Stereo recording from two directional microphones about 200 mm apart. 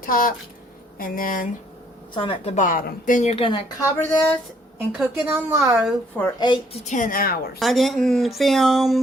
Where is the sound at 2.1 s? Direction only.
25° left (ahead or behind).